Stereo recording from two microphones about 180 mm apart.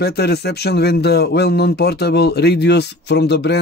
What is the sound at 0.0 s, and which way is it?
Speech, 65° left (ahead or behind).